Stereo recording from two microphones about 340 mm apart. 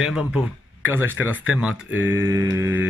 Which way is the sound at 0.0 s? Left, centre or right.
Centre.